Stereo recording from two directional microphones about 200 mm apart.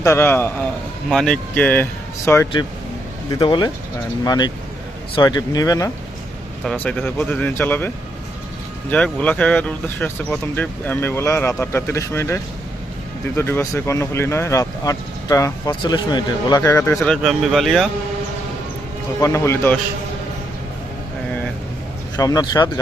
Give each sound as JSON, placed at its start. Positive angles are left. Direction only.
{"t": 0.0, "sound": "speech", "side_deg": 15}
{"t": 6.7, "sound": "speech", "side_deg": 5}
{"t": 19.2, "sound": "speech", "side_deg": 15}
{"t": 22.1, "sound": "speech", "side_deg": 20}